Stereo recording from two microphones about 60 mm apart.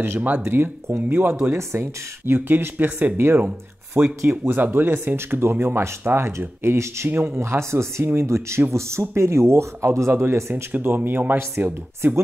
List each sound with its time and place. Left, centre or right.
0.5 s speech: right
1.0 s speech: right
1.5 s speech: right
3.2 s speech: right
7.1 s speech: right
7.3 s speech: right
10.5 s speech: right